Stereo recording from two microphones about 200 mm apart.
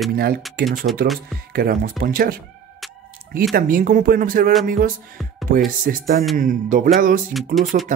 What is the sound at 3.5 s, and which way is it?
Speech, 45° right (ahead or behind).